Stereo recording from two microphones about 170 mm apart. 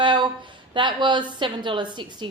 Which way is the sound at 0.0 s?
30° right (ahead or behind).